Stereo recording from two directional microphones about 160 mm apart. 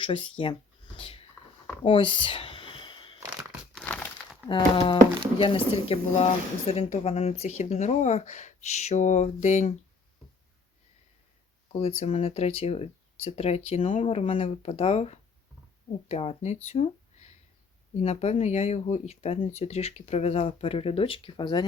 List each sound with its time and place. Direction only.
0.0 s speech: 30° left (ahead or behind)
0.9 s a sound: 35° left (ahead or behind)
3.8 s crumpling: 5° left (ahead or behind)
4.4 s speech: 30° left (ahead or behind)
11.7 s speech: 40° left (ahead or behind)
16.6 s a sound: 40° left (ahead or behind)
18.0 s speech: 40° left (ahead or behind)